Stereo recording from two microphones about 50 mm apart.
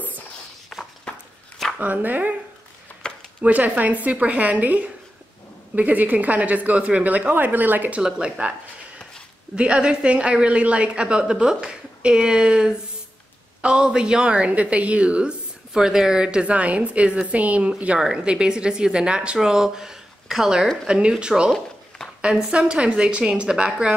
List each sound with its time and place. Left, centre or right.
0.7 s walk: centre
1.8 s a woman's voice: right
3.0 s a sound: centre
3.4 s a woman's voice: right
8.0 s a woman's voice: right
9.6 s a woman's voice: centre
21.5 s a sound: centre
22.2 s a woman's voice: centre